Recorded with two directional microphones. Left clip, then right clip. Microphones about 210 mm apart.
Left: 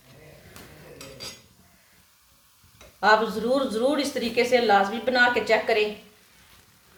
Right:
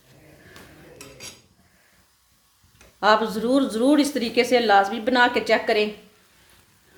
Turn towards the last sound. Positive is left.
turn(degrees=-50)  # may be behind; listen again after turning